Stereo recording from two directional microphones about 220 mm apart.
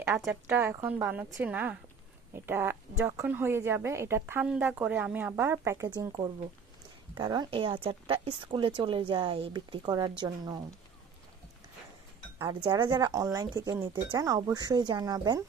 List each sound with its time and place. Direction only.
0.2 s speech: 5° right (ahead or behind)
12.4 s speech: 20° right (ahead or behind)